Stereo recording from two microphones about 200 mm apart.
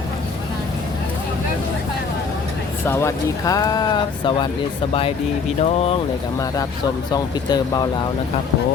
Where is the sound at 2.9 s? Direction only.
15° left (ahead or behind).